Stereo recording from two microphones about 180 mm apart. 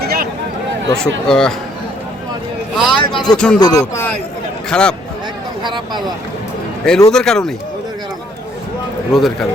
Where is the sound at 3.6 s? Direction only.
20° left (ahead or behind).